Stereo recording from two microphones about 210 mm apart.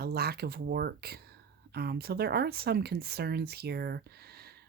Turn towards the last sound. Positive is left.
turn(degrees=-50)  # may be behind; listen again after turning